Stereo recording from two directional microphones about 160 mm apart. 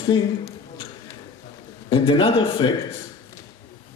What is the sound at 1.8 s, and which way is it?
Speech, 35° left (ahead or behind).